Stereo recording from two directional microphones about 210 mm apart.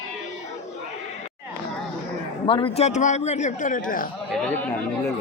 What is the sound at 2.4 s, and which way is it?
A man's voice, 25° left (ahead or behind).